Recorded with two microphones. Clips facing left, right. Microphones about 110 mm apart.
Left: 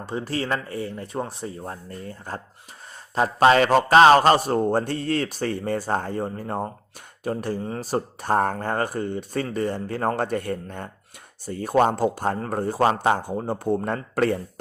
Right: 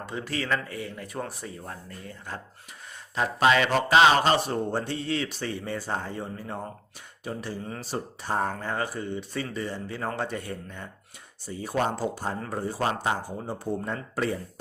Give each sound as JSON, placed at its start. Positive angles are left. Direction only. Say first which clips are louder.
{"t": 0.0, "sound": "a man's voice", "louder": "left 4 dB", "side_deg": 35}
{"t": 7.6, "sound": "a man's voice", "louder": "left 7 dB", "side_deg": 40}